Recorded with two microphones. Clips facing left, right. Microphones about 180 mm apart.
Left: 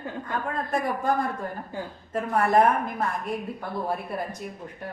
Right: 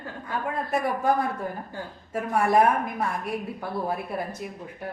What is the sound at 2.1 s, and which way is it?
Speech, 10° right (ahead or behind).